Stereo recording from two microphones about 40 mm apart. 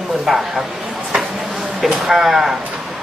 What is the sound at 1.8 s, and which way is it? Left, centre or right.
Speech, centre.